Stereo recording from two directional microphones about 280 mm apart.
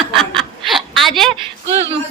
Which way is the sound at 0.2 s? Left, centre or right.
Centre.